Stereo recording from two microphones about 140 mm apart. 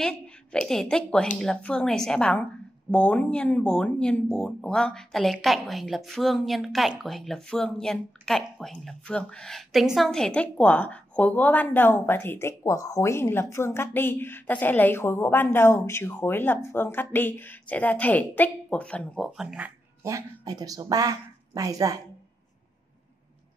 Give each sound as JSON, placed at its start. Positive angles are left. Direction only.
{"t": 0.0, "sound": "a woman's voice", "side_deg": 5}
{"t": 20.0, "sound": "speech", "side_deg": -20}